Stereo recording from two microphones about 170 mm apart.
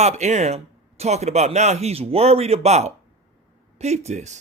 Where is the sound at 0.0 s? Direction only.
40° right (ahead or behind).